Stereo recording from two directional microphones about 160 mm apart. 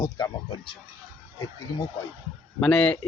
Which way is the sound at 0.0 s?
25° left (ahead or behind).